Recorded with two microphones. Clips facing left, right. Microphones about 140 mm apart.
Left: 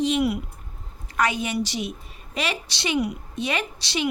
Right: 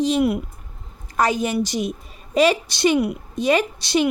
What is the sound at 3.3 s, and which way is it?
Speech, 40° right (ahead or behind).